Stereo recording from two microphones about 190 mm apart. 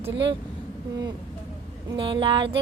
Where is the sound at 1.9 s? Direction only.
25° right (ahead or behind).